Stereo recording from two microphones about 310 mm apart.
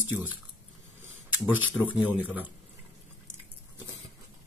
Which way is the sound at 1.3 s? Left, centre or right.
Centre.